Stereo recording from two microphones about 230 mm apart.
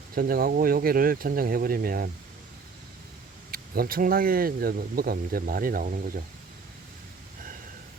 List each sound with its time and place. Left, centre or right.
0.1 s speech: right
3.5 s speech: right